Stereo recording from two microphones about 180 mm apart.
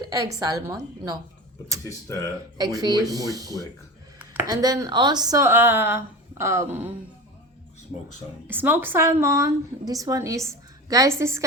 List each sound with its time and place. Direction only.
0.0 s a sound: 20° right (ahead or behind)
0.3 s speech: 20° right (ahead or behind)
1.8 s speech: 15° left (ahead or behind)
2.6 s a woman's voice: 20° right (ahead or behind)
8.4 s a woman's voice: 10° right (ahead or behind)